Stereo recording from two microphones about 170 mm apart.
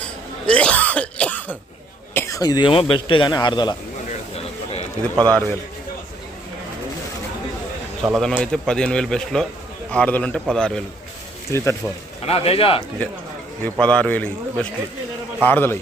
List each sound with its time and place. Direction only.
0.0 s throat clearing: 5° left (ahead or behind)
2.1 s a man's voice: 15° left (ahead or behind)
5.1 s a man's voice: 20° right (ahead or behind)
8.0 s a man's voice: centre (ahead or behind)
11.5 s a man's voice: 15° left (ahead or behind)
12.2 s speech: 35° left (ahead or behind)
13.7 s a man's voice: 5° left (ahead or behind)